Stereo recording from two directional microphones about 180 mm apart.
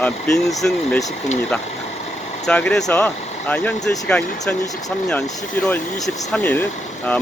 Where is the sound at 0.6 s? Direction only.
10° left (ahead or behind).